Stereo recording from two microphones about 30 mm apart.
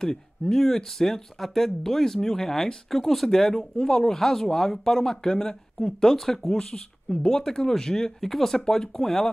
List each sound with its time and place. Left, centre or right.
0.0 s speech: centre